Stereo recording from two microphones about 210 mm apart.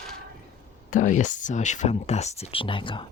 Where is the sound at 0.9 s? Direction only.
40° left (ahead or behind).